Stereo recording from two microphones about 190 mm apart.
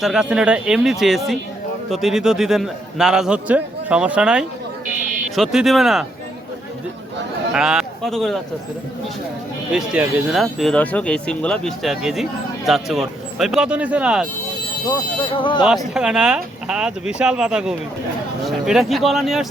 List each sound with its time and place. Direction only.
0.0 s a man's voice: centre (ahead or behind)
7.5 s speech: 5° right (ahead or behind)
9.7 s a man's voice: 5° right (ahead or behind)
15.4 s speech: 25° left (ahead or behind)
16.0 s a man's voice: 5° right (ahead or behind)